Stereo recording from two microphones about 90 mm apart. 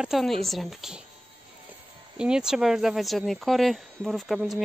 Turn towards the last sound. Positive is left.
turn(degrees=5)  # may be behind; listen again after turning